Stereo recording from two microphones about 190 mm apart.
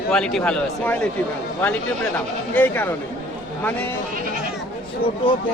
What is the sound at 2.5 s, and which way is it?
Speech, 10° left (ahead or behind).